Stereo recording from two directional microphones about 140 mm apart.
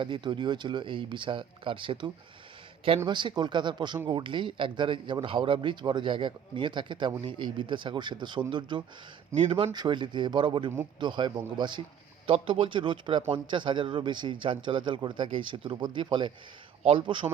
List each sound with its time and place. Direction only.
0.0 s speech: 35° right (ahead or behind)
3.1 s speech: 35° right (ahead or behind)